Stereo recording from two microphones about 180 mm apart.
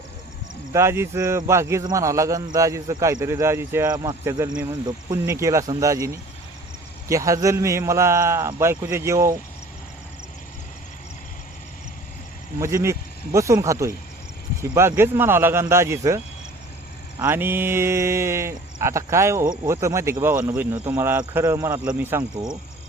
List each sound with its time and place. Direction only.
0.7 s speech: 15° right (ahead or behind)
7.1 s speech: 15° right (ahead or behind)
12.5 s speech: 15° right (ahead or behind)